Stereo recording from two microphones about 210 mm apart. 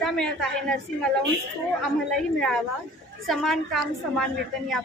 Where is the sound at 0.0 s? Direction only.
5° left (ahead or behind).